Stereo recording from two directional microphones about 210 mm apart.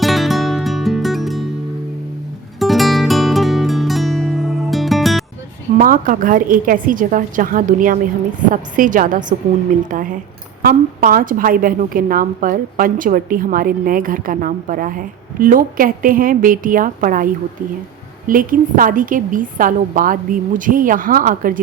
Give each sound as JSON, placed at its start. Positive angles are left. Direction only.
{"t": 0.0, "sound": "music", "side_deg": 0}
{"t": 2.6, "sound": "music", "side_deg": 0}
{"t": 5.7, "sound": "a woman's voice", "side_deg": -40}